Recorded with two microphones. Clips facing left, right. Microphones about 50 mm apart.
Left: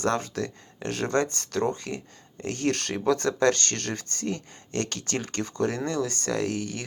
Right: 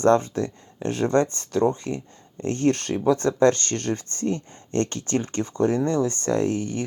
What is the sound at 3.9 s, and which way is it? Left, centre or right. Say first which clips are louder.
Speech: right 6 dB; left.